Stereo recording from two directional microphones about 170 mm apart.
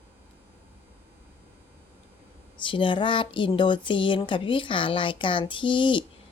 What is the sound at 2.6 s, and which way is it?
A woman's voice, 30° left (ahead or behind).